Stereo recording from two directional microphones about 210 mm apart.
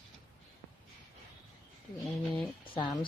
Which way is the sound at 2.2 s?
5° left (ahead or behind).